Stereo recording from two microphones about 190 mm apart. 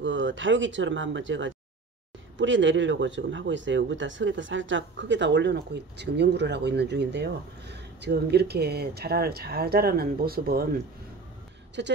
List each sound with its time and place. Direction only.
0.0 s speech: 80° right; by 10.6 s 50° right (ahead or behind)
11.8 s speech: 65° right (ahead or behind)